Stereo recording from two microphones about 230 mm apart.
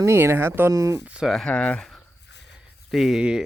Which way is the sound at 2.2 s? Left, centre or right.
Left.